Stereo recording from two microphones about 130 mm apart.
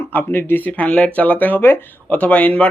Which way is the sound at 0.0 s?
15° left (ahead or behind).